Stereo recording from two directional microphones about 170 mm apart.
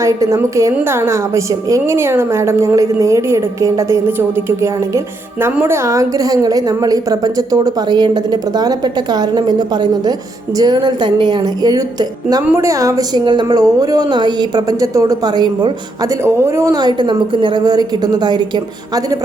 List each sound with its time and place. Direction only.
0.0 s a woman's voice: 20° right (ahead or behind)